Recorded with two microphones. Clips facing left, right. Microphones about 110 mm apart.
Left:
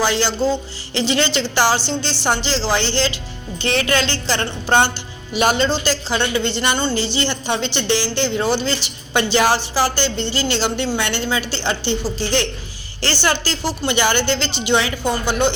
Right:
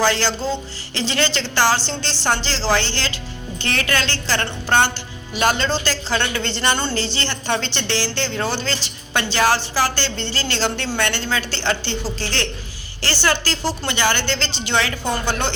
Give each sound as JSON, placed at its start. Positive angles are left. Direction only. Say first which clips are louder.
{"t": 0.0, "sound": "a woman's voice", "louder": "left 2 dB", "side_deg": 15}